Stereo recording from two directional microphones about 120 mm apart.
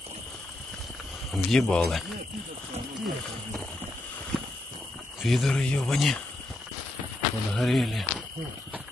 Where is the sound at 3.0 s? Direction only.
10° left (ahead or behind).